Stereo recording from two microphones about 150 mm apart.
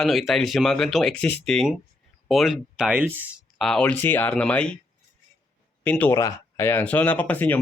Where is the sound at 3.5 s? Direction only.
5° left (ahead or behind).